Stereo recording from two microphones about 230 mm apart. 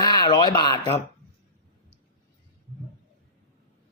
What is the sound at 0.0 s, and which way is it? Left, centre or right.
Speech, centre.